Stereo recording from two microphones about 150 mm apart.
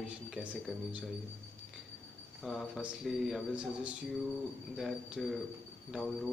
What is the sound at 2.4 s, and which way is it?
A man's voice, centre (ahead or behind).